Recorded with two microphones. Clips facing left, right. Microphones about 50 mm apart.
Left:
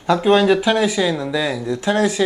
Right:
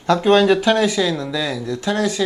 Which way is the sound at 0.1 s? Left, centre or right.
Centre.